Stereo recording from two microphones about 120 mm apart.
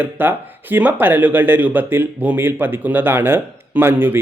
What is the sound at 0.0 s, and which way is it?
Speech, 15° right (ahead or behind).